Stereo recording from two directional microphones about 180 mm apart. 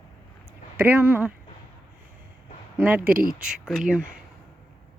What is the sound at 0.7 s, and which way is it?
Speech, 10° right (ahead or behind).